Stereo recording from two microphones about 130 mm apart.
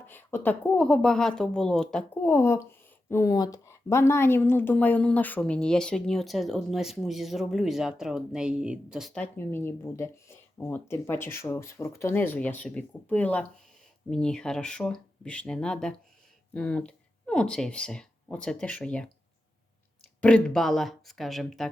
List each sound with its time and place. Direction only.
0.1 s speech: 15° left (ahead or behind)
2.2 s a woman's voice: 20° left (ahead or behind); by 9.1 s 5° right (ahead or behind)
9.1 s a woman's voice: 15° left (ahead or behind)
20.2 s a woman's voice: 5° left (ahead or behind)